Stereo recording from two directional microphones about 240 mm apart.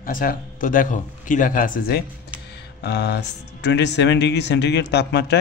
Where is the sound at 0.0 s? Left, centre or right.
Left.